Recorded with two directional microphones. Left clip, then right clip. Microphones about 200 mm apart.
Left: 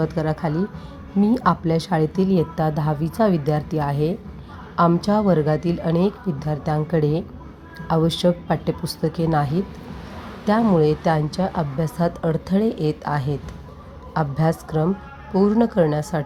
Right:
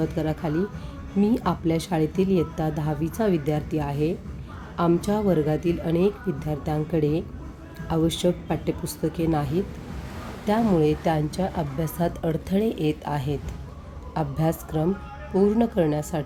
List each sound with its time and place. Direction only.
0.0 s a woman's voice: 10° left (ahead or behind)